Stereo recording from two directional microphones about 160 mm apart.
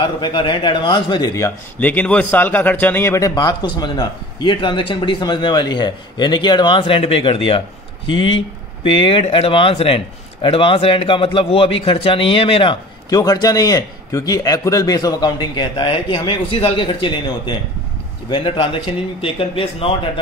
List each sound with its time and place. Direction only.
0.0 s a man's voice: 30° left (ahead or behind)
1.8 s a man's voice: 10° left (ahead or behind); by 12.7 s 35° left (ahead or behind)
13.1 s a man's voice: 25° left (ahead or behind)